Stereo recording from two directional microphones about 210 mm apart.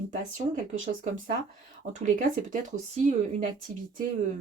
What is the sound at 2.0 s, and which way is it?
Speech, 40° right (ahead or behind).